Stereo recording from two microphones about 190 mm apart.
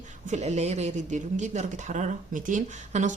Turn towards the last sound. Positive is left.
turn(degrees=-40)  # may be behind; listen again after turning